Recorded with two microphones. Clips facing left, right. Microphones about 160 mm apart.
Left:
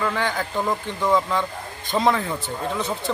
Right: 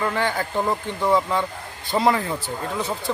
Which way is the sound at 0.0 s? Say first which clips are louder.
Right 1 dB; 10° right (ahead or behind).